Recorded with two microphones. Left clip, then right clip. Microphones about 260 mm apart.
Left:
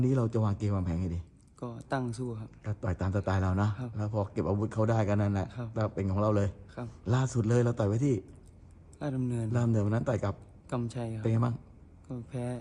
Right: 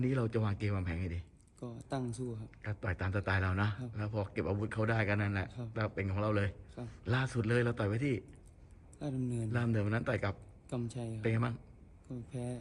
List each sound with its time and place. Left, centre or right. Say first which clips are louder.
0.0 s a man's voice: left 4 dB; centre
1.5 s speech: left 6 dB; centre
2.6 s a man's voice: left 2 dB; centre
5.5 s speech: left 5 dB; centre
5.7 s a man's voice: left 4 dB; centre
9.0 s speech: left 5 dB; centre
9.5 s a man's voice: left 4 dB; centre
10.7 s speech: left 6 dB; centre
11.2 s a man's voice: left 2 dB; centre
12.0 s speech: left 5 dB; centre